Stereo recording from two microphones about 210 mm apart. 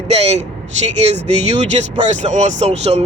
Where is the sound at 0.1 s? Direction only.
30° right (ahead or behind).